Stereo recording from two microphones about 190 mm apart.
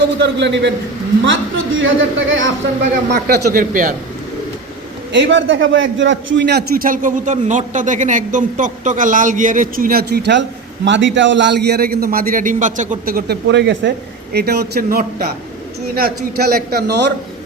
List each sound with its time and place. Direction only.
0.2 s a man's voice: 70° right (ahead or behind)
1.2 s a man's voice: 80° right
3.1 s a man's voice: 55° right (ahead or behind)
5.1 s a man's voice: 70° right (ahead or behind)